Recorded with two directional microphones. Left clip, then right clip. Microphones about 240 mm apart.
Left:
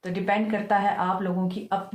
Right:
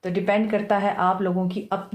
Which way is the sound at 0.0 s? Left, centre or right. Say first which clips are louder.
Right 3 dB; right.